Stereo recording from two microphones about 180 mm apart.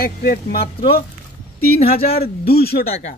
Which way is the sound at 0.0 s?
55° left (ahead or behind).